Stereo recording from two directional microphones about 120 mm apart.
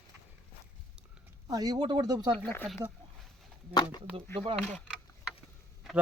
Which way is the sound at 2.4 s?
15° left (ahead or behind).